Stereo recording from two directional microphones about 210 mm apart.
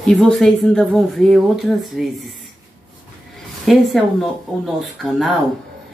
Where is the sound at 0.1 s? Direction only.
Centre (ahead or behind).